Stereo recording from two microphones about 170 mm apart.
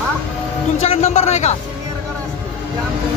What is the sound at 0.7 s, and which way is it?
Speech, 40° left (ahead or behind).